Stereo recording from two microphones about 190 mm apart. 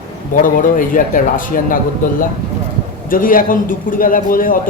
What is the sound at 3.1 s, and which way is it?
A man's voice, 45° left (ahead or behind).